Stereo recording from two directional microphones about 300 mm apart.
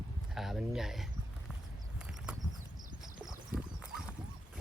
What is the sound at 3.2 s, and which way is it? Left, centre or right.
Clip-clop, centre.